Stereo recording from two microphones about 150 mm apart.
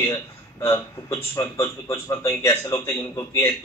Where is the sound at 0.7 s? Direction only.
25° left (ahead or behind).